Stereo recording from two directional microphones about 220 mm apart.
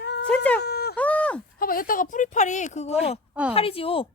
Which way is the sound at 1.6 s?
40° left (ahead or behind).